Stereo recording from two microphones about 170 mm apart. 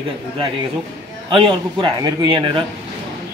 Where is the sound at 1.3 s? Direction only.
30° right (ahead or behind).